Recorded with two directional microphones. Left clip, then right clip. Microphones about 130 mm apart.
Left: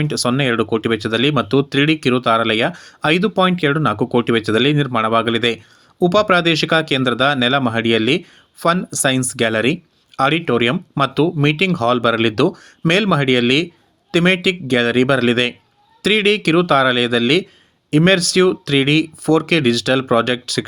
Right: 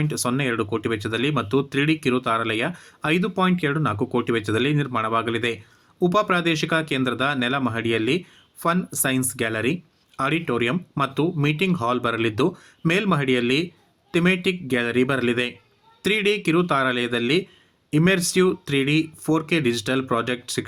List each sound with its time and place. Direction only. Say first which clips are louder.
0.0 s speech: left 7 dB; 30° left (ahead or behind)